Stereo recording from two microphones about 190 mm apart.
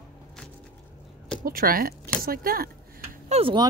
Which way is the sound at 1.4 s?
50° right (ahead or behind).